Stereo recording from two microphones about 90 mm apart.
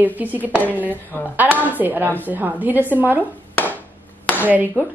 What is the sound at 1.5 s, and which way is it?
Speech, 20° left (ahead or behind).